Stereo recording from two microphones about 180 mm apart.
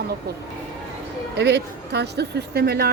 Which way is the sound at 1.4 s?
70° right (ahead or behind).